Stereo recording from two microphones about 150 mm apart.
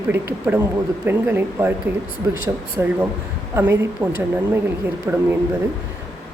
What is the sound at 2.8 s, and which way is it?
Speech, 15° right (ahead or behind).